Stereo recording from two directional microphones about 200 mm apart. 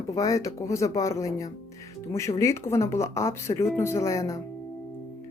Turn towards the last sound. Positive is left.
turn(degrees=15)  # may be behind; listen again after turning